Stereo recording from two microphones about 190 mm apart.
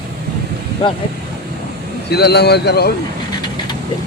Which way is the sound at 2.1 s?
60° left (ahead or behind).